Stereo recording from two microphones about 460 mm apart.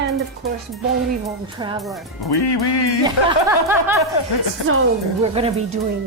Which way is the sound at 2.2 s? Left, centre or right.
Left.